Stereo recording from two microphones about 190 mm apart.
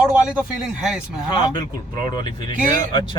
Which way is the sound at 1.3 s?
25° left (ahead or behind).